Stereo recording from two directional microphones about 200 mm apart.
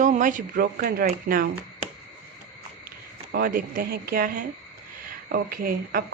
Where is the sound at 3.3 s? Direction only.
50° right (ahead or behind).